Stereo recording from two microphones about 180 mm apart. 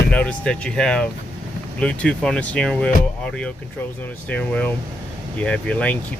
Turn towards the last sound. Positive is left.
turn(degrees=10)  # may be behind; listen again after turning